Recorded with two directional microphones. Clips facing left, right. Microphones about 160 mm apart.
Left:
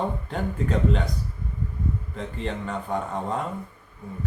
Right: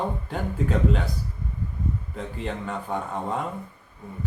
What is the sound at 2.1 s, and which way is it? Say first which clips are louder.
A man's voice: left 1 dB; 5° right (ahead or behind).